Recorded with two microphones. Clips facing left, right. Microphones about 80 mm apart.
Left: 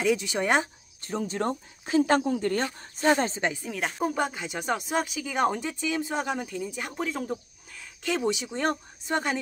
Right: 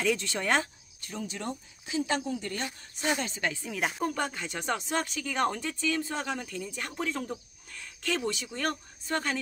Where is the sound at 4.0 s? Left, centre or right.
Centre.